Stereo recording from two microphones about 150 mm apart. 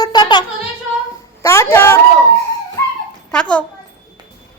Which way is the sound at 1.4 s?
20° left (ahead or behind).